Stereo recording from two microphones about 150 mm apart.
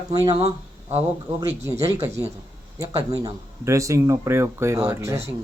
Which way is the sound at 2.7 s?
25° right (ahead or behind).